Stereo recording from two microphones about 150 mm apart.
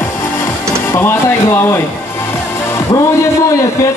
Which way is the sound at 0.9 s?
15° left (ahead or behind).